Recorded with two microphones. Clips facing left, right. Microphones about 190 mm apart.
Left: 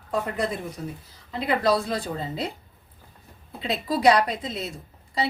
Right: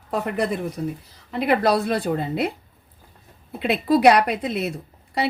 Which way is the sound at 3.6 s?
65° right (ahead or behind).